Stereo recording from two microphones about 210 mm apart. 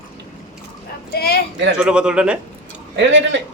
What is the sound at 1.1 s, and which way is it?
Speech, 50° left (ahead or behind).